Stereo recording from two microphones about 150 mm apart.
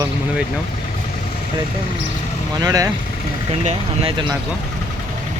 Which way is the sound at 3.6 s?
50° right (ahead or behind).